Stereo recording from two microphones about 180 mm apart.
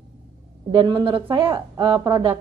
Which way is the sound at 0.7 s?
25° right (ahead or behind).